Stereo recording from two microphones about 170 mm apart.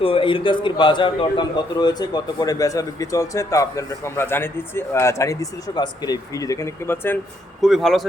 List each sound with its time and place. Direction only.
0.0 s a man's voice: 30° left (ahead or behind); by 7.2 s 15° left (ahead or behind)
7.6 s speech: centre (ahead or behind)